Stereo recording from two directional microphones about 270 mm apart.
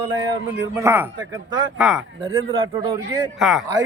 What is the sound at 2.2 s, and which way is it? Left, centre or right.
Speech, centre.